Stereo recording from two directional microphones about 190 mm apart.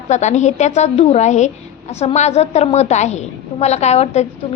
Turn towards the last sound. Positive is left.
turn(degrees=35)  # may be behind; listen again after turning